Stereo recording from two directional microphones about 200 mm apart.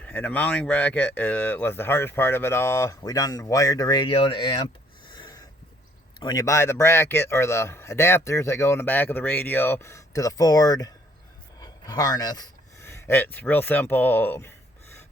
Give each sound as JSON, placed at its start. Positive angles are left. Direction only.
{"t": 0.0, "sound": "speech", "side_deg": 5}
{"t": 5.0, "sound": "a sound", "side_deg": 20}
{"t": 6.1, "sound": "speech", "side_deg": 20}